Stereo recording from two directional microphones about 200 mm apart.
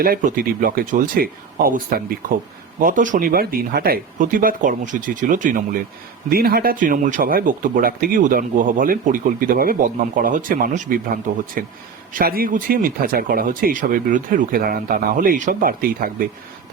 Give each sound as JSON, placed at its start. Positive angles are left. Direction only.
{"t": 0.0, "sound": "speech", "side_deg": -45}